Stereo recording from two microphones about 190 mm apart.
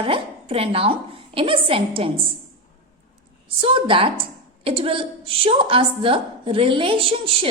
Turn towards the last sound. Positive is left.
turn(degrees=-30)  # may be behind; listen again after turning